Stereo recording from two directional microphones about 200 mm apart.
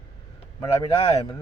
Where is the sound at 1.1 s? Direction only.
20° left (ahead or behind).